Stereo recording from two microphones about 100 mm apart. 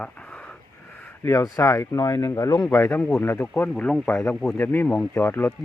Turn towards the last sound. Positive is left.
turn(degrees=25)  # may be behind; listen again after turning